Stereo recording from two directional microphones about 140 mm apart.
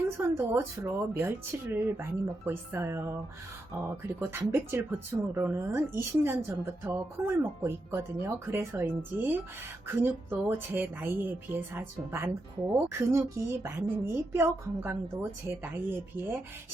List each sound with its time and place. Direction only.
0.0 s speech: 15° right (ahead or behind)